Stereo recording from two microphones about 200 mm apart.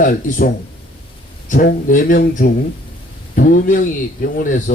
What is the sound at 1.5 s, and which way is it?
Speech, 40° left (ahead or behind).